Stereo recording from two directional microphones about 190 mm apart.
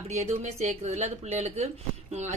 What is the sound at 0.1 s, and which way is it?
Speech, 35° right (ahead or behind).